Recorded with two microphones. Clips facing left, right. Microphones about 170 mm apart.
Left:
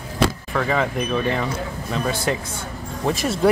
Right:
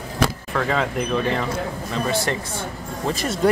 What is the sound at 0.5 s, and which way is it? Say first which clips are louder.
Speech: left 1 dB; 5° left (ahead or behind).